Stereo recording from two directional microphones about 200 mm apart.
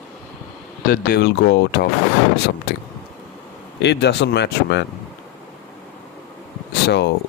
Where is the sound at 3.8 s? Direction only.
55° left (ahead or behind).